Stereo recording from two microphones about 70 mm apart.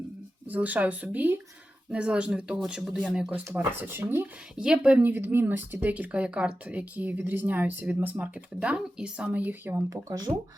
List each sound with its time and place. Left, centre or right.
0.4 s speech: right
3.5 s speech: right
4.5 s speech: centre
5.0 s speech: right
9.9 s speech: right